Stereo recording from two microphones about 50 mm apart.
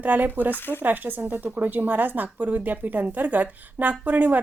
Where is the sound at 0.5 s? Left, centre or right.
Left.